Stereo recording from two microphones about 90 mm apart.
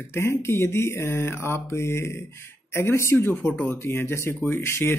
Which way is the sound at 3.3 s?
15° left (ahead or behind).